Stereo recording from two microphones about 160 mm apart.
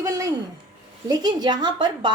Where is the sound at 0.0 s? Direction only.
20° right (ahead or behind).